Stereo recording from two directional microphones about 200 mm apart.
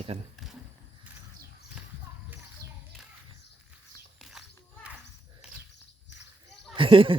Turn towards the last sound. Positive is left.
turn(degrees=-25)  # may be behind; listen again after turning